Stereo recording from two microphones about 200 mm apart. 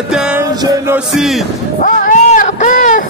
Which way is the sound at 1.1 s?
Centre (ahead or behind).